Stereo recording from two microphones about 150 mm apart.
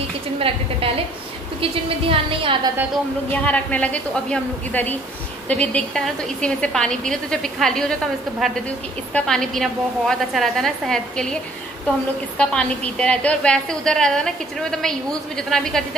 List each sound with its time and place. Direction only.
0.4 s a woman's voice: 40° right (ahead or behind)
3.3 s a woman's voice: 10° left (ahead or behind)
12.4 s a woman's voice: 5° left (ahead or behind)